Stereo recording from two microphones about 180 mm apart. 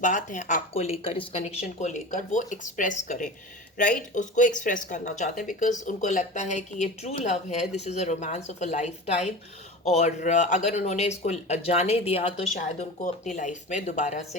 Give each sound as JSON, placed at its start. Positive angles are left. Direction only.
{"t": 0.0, "sound": "speech", "side_deg": 45}
{"t": 13.3, "sound": "speech", "side_deg": 45}